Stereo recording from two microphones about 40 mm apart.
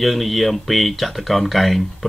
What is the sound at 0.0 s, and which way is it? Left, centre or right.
Speech, centre.